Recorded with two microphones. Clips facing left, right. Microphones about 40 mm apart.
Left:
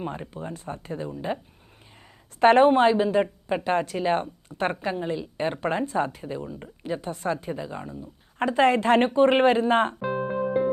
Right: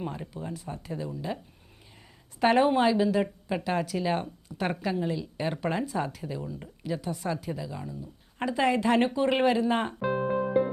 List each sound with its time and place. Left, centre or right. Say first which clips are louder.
0.0 s a woman's voice: left 3 dB; left
2.4 s a woman's voice: left 6 dB; left
10.0 s keyboard: left 1 dB; centre